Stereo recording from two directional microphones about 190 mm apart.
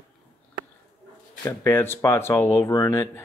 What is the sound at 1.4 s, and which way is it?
Speech, 15° left (ahead or behind).